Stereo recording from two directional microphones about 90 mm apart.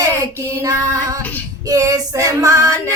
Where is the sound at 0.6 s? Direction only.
40° right (ahead or behind).